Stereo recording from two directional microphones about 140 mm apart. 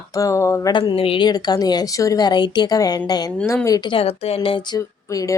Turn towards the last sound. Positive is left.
turn(degrees=25)  # may be behind; listen again after turning